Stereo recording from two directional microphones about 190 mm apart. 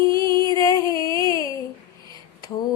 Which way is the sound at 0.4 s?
20° left (ahead or behind).